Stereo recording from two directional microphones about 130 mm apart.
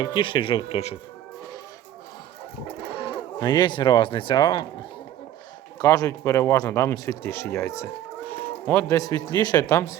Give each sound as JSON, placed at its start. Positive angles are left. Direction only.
{"t": 0.0, "sound": "speech", "side_deg": 40}
{"t": 2.9, "sound": "a sound", "side_deg": 45}
{"t": 3.4, "sound": "speech", "side_deg": 35}
{"t": 5.8, "sound": "speech", "side_deg": 25}